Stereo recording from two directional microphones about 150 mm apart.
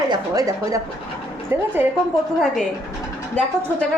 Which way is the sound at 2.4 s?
Centre (ahead or behind).